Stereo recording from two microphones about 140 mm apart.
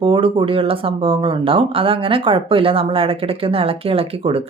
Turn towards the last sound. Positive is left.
turn(degrees=-45)  # may be behind; listen again after turning